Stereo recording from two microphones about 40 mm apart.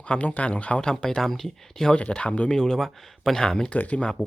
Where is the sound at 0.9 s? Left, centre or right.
Centre.